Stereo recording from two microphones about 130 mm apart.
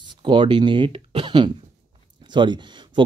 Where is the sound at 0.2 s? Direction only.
40° right (ahead or behind).